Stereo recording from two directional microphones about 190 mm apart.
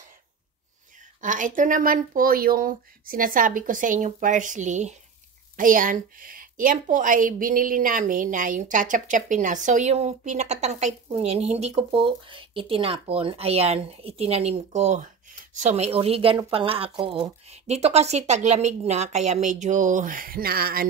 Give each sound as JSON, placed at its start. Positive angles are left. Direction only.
{"t": 1.2, "sound": "a woman's voice", "side_deg": -45}